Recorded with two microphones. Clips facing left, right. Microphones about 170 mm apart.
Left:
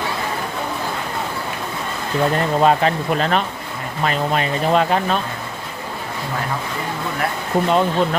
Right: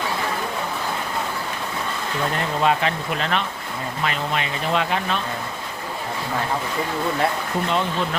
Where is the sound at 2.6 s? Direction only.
40° left (ahead or behind).